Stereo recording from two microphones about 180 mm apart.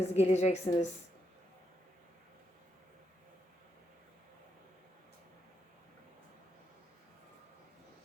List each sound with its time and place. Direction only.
0.0 s a woman's voice: 35° left (ahead or behind)